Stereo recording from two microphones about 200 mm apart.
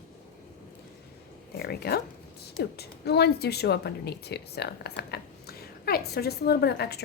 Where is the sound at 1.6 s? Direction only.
50° left (ahead or behind).